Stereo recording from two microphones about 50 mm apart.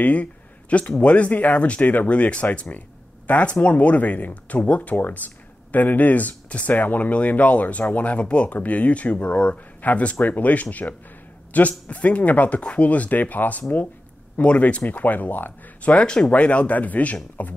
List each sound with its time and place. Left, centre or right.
0.0 s speech: left
15.9 s speech: left